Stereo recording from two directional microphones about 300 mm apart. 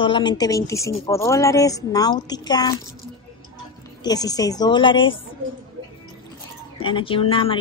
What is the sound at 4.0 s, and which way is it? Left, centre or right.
Speech, centre.